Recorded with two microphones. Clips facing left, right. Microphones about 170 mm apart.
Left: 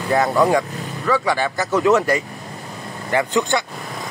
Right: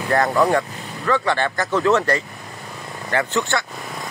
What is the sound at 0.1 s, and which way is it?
Speech, 10° left (ahead or behind).